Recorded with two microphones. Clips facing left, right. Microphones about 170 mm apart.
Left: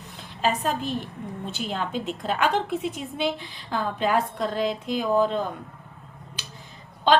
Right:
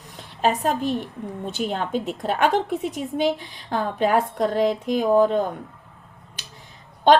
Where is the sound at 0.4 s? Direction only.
50° right (ahead or behind).